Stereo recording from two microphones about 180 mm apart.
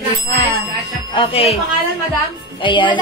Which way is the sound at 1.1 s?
30° left (ahead or behind).